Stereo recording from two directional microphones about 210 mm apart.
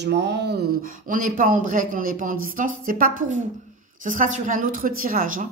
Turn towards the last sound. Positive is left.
turn(degrees=-40)  # may be behind; listen again after turning